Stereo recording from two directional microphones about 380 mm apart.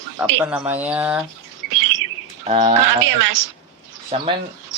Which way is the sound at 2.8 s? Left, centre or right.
Right.